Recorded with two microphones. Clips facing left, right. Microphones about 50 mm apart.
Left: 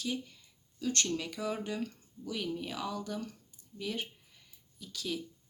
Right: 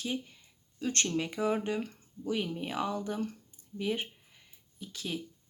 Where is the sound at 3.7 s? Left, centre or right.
Right.